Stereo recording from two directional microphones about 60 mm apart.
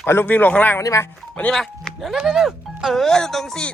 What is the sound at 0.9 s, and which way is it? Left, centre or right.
Speech, left.